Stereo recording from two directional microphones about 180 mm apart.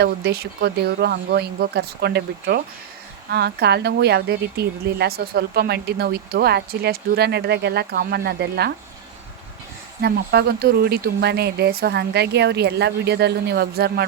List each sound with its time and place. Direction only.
0.0 s a woman's voice: 65° right (ahead or behind)
10.0 s a woman's voice: 60° right (ahead or behind)